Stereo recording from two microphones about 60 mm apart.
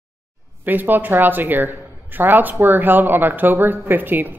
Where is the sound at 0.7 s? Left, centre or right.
Right.